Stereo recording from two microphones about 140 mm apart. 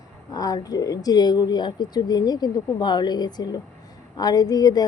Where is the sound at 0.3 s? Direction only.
25° left (ahead or behind).